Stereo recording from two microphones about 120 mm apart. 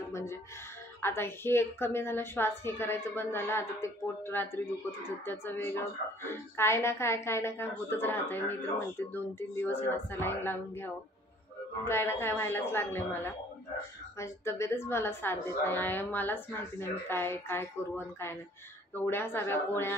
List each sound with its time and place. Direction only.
0.1 s a woman's voice: 20° left (ahead or behind)
18.9 s a woman's voice: 20° left (ahead or behind)